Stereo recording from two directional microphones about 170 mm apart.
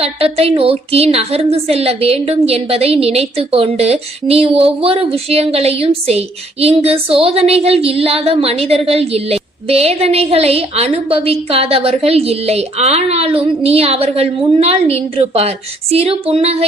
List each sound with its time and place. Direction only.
0.0 s a woman's voice: 35° right (ahead or behind)